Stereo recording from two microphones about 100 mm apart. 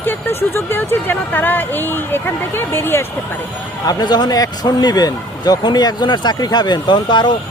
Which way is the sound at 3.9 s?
45° left (ahead or behind).